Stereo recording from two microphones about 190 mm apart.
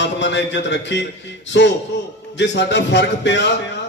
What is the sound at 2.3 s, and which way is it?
A man's voice, 65° left (ahead or behind).